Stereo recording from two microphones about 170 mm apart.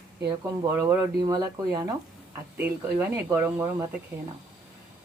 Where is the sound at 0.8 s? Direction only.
20° right (ahead or behind).